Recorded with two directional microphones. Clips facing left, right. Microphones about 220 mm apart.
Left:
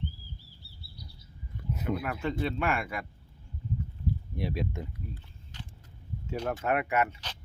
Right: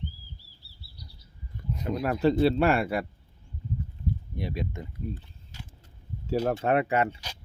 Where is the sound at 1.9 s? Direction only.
35° right (ahead or behind).